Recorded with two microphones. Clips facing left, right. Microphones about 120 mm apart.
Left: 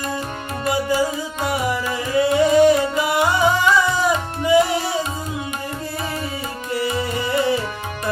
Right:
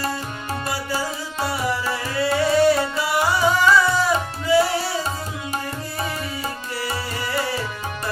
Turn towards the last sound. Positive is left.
turn(degrees=20)  # may be behind; listen again after turning